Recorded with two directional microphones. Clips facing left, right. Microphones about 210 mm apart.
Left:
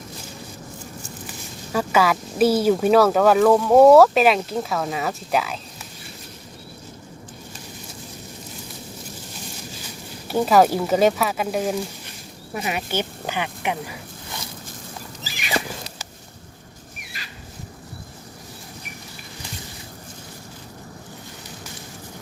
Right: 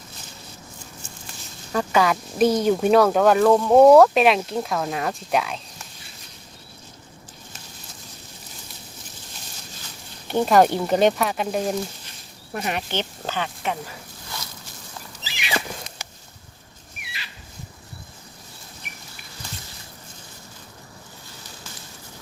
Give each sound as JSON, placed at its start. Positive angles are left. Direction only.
{"t": 1.3, "sound": "speech", "side_deg": 5}
{"t": 10.2, "sound": "speech", "side_deg": 5}
{"t": 15.2, "sound": "a sound", "side_deg": 45}